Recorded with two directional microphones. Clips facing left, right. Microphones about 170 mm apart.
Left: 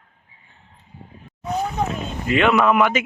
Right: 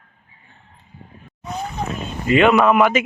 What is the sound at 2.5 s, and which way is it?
Speech, 25° right (ahead or behind).